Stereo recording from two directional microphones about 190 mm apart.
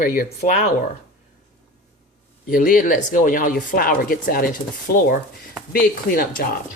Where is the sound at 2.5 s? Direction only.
45° left (ahead or behind).